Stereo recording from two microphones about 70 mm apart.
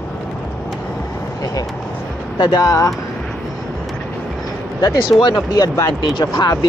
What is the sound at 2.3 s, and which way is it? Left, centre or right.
Speech, left.